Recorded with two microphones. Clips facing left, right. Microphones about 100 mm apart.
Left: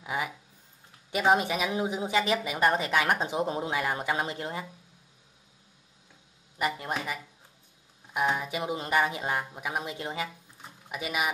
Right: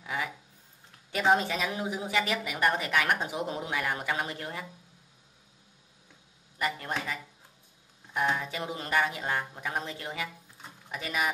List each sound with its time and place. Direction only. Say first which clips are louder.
0.0 s a sound: left 2 dB; 20° left (ahead or behind)
1.1 s a woman's voice: left 1 dB; 15° left (ahead or behind)
8.1 s speech: left 1 dB; 10° left (ahead or behind)
9.9 s a woman's voice: left 3 dB; 25° left (ahead or behind)
10.9 s speech: left 1 dB; 10° left (ahead or behind)